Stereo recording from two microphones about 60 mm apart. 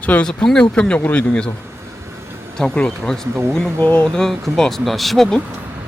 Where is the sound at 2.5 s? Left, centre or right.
Centre.